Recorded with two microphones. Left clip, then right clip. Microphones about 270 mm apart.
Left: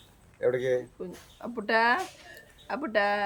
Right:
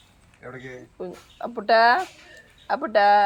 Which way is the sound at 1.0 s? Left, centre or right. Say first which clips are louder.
Right 7 dB; centre.